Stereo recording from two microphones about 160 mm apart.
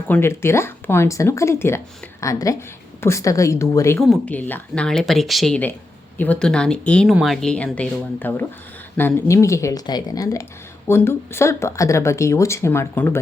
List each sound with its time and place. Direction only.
0.1 s a woman's voice: 15° left (ahead or behind)
4.0 s a woman's voice: 5° left (ahead or behind)